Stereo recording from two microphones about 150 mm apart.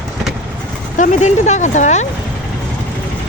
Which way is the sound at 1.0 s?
50° left (ahead or behind).